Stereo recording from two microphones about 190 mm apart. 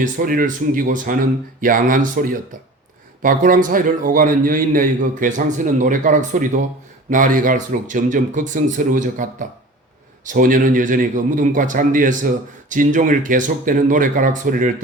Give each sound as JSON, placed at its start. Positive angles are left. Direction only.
{"t": 0.0, "sound": "a man's voice", "side_deg": -50}
{"t": 10.2, "sound": "a man's voice", "side_deg": -45}